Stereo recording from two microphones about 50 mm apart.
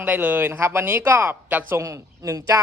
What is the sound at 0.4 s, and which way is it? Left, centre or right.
Speech, right.